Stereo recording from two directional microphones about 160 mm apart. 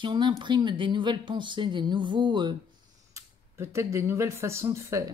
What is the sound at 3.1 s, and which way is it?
Speech, 20° right (ahead or behind).